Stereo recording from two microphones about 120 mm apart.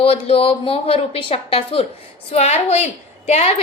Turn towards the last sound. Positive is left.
turn(degrees=60)  # may be behind; listen again after turning